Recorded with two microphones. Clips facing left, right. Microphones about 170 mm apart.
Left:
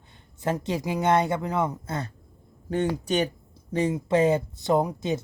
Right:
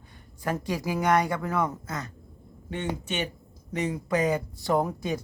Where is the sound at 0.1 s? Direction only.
25° left (ahead or behind).